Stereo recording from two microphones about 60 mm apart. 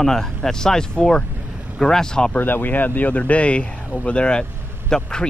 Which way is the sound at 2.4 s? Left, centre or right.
Left.